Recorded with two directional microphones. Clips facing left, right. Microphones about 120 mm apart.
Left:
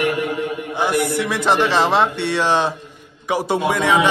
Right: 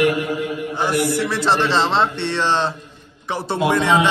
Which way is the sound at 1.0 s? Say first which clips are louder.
Even; 15° left (ahead or behind).